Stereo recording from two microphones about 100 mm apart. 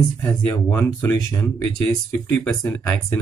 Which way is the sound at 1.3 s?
25° left (ahead or behind).